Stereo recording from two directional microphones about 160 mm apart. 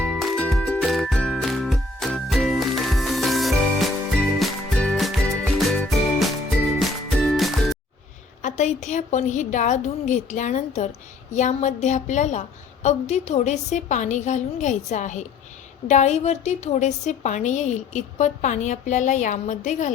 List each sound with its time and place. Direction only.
0.0 s music: centre (ahead or behind)
8.4 s a woman's voice: 50° left (ahead or behind)